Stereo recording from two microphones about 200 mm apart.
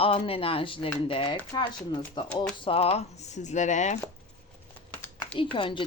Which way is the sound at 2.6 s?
30° left (ahead or behind).